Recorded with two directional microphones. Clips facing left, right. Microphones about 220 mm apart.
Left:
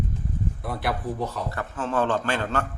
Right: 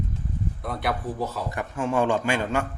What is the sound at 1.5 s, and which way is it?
A man's voice, 15° right (ahead or behind).